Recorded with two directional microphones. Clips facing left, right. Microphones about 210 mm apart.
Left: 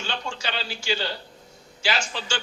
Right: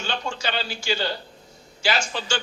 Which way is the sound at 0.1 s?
45° right (ahead or behind).